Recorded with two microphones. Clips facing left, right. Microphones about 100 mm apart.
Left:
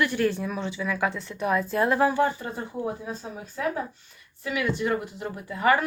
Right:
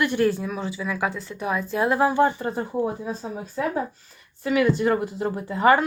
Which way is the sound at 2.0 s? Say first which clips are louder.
Right 4 dB; 20° right (ahead or behind).